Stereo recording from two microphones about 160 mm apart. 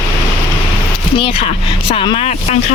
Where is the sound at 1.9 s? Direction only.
35° left (ahead or behind).